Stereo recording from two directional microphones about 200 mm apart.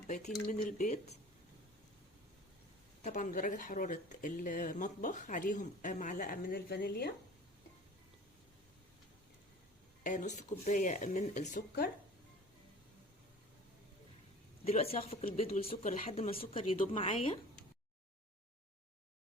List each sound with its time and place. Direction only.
0.4 s speech: 40° left (ahead or behind)
3.0 s speech: 40° left (ahead or behind)
10.0 s speech: 40° left (ahead or behind)
14.6 s speech: 30° left (ahead or behind)
16.7 s speech: 40° left (ahead or behind)
17.0 s speech: 25° left (ahead or behind)